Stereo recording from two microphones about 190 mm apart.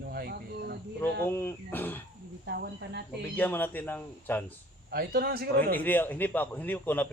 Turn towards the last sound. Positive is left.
turn(degrees=10)  # may be behind; listen again after turning